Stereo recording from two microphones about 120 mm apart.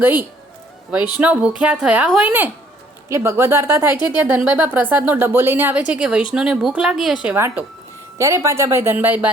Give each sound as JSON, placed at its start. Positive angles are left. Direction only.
{"t": 0.0, "sound": "speech", "side_deg": -15}
{"t": 3.1, "sound": "speech", "side_deg": -20}
{"t": 7.3, "sound": "speech", "side_deg": -20}